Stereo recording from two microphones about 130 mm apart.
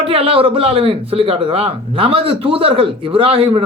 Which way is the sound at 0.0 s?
45° right (ahead or behind).